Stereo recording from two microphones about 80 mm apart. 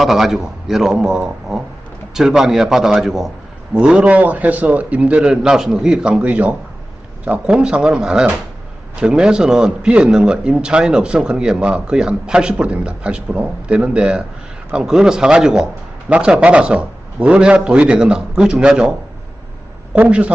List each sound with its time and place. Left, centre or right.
0.0 s a man's voice: centre